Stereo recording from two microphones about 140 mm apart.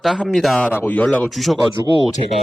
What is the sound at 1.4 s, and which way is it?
Speech, centre (ahead or behind).